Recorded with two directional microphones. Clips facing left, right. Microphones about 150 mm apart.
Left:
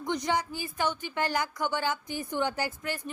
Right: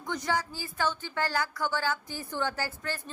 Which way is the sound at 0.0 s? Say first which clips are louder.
Left 2 dB; 20° left (ahead or behind).